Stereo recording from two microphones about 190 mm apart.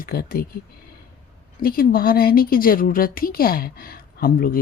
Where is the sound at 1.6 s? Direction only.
50° left (ahead or behind).